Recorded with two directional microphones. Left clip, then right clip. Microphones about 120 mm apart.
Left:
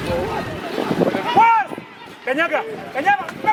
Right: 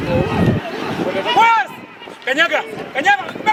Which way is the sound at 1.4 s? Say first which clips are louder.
Right 1 dB; 35° right (ahead or behind).